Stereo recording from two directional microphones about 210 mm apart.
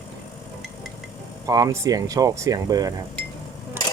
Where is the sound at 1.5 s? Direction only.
15° right (ahead or behind).